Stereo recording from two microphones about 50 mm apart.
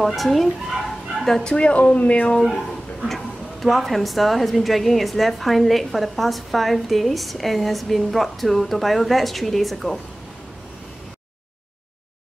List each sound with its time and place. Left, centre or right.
0.0 s a woman's voice: centre
0.8 s bow-wow: centre
1.4 s speech: centre
3.6 s a woman's voice: centre